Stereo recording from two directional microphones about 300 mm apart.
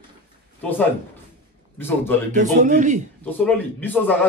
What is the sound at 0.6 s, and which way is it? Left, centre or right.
Speech, centre.